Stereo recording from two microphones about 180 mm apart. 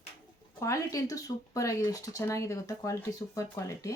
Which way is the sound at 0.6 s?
20° left (ahead or behind).